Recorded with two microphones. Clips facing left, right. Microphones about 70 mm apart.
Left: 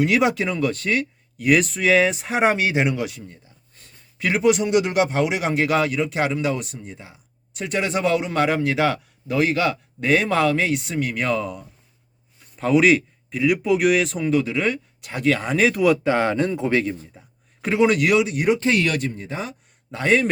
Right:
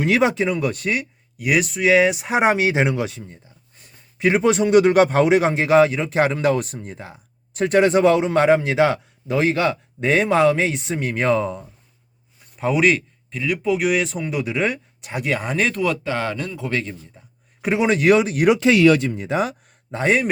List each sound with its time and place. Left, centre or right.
0.0 s a man's voice: right
0.5 s a man's voice: centre; by 11.6 s right
12.5 s speech: centre
14.5 s speech: centre
16.0 s speech: centre
17.6 s speech: centre
18.0 s speech: right
18.3 s speech: right
19.1 s speech: right
19.9 s a man's voice: right